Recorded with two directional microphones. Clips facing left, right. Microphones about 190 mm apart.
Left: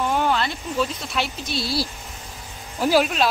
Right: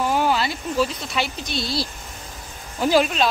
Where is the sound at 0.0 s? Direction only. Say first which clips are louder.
Right 1 dB; 5° right (ahead or behind).